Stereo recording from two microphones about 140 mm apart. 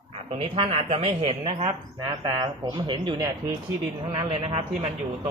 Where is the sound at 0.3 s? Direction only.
40° right (ahead or behind).